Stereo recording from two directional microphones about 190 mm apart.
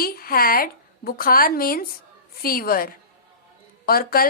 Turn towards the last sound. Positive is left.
turn(degrees=50)  # may be behind; listen again after turning